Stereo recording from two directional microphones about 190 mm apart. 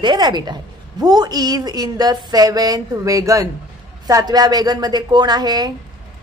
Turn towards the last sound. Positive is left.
turn(degrees=-20)  # may be behind; listen again after turning